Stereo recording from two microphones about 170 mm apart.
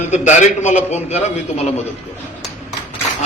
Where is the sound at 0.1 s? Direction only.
45° left (ahead or behind).